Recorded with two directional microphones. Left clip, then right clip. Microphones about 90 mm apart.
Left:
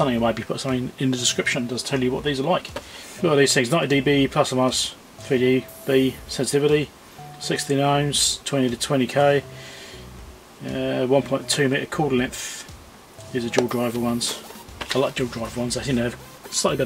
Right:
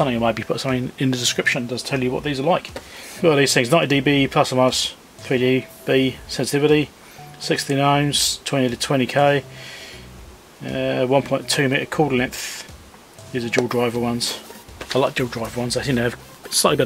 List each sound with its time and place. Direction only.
0.0 s speech: 25° right (ahead or behind)
10.7 s speech: 35° right (ahead or behind)